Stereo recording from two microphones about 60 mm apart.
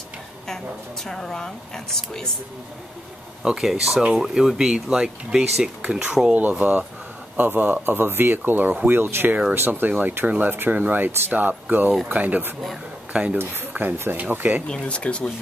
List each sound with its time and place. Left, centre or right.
1.0 s speech: centre
3.4 s speech: centre
13.4 s speech: right
14.7 s speech: centre